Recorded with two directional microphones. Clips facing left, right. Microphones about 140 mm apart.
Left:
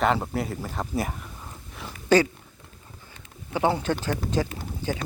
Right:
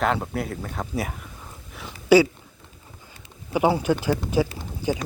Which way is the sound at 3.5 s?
10° right (ahead or behind).